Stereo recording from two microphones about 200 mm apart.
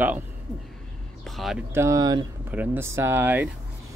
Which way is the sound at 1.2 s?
Centre (ahead or behind).